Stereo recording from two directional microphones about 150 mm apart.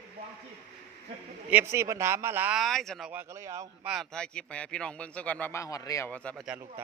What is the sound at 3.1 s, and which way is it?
Speech, 15° right (ahead or behind).